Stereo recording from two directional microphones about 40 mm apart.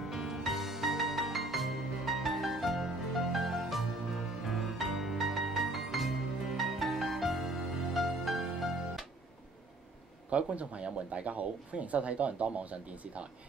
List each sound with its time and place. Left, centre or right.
0.1 s music: centre
10.3 s speech: right